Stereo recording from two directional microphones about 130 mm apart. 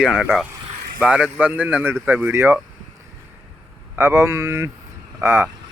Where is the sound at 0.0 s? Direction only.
5° right (ahead or behind).